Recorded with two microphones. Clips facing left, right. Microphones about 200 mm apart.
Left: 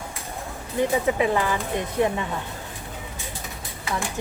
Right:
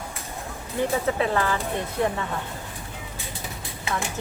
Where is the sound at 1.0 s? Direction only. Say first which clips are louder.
Left 2 dB; 15° left (ahead or behind).